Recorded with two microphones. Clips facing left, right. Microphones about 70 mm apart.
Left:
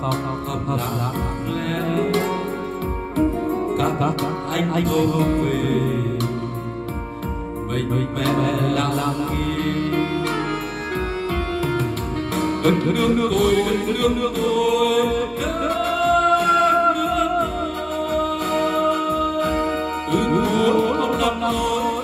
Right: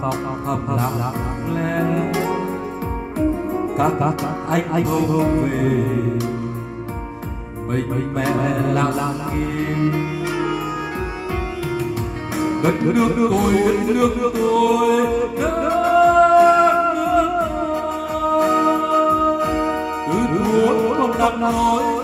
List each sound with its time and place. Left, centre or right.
1.5 s music: centre
3.5 s music: centre
7.7 s music: centre
12.4 s music: centre
21.5 s music: centre